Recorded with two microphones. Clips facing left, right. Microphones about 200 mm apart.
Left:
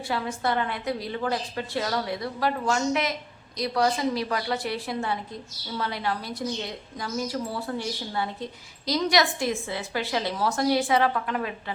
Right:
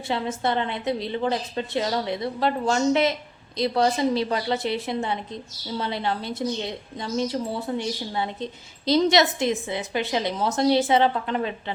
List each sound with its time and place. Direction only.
0.1 s a woman's voice: 25° right (ahead or behind)